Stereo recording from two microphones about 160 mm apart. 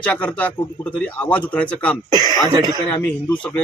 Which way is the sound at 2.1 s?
25° right (ahead or behind).